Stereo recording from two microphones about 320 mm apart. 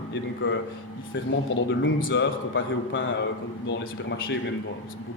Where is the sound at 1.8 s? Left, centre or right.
Left.